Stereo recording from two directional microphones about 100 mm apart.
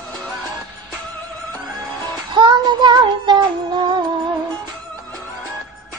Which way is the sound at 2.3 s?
50° right (ahead or behind).